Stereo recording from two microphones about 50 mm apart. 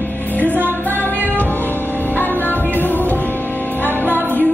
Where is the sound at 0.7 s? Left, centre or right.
Left.